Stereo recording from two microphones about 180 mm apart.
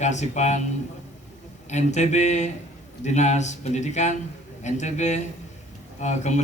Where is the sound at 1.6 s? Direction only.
40° left (ahead or behind).